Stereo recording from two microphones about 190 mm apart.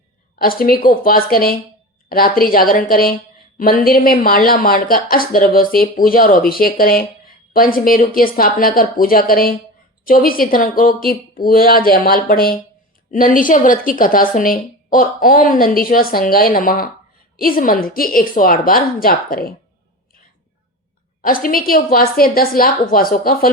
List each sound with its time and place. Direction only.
0.3 s a woman's voice: 50° left (ahead or behind)
21.2 s a woman's voice: 45° left (ahead or behind)